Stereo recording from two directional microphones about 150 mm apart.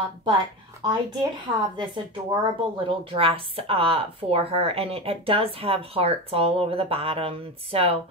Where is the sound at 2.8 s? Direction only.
35° right (ahead or behind).